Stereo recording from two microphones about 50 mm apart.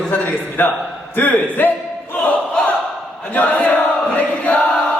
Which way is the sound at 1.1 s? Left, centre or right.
Left.